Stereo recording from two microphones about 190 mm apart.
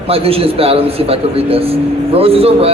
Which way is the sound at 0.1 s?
30° right (ahead or behind).